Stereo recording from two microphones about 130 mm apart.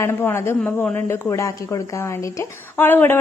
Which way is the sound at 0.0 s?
15° left (ahead or behind).